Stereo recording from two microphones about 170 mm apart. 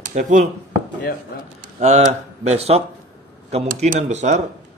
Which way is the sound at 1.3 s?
70° left (ahead or behind).